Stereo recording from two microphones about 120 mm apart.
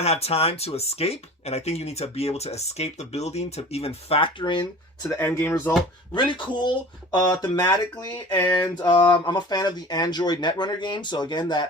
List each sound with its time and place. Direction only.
0.0 s speech: 60° left (ahead or behind); by 4.6 s 40° left (ahead or behind)
5.0 s speech: 20° left (ahead or behind)
6.1 s speech: 40° left (ahead or behind)